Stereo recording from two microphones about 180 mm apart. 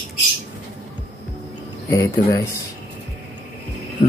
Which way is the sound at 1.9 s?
15° left (ahead or behind).